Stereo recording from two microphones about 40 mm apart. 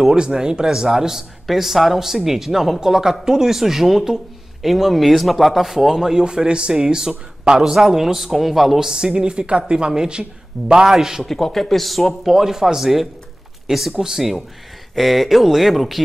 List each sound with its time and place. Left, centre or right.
0.0 s speech: centre
8.7 s speech: centre
11.2 s speech: centre
15.0 s speech: centre